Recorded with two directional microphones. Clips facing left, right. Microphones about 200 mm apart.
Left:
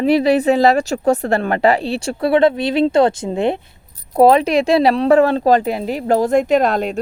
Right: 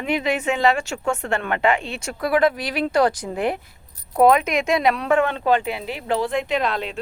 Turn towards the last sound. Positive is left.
turn(degrees=45)  # may be behind; listen again after turning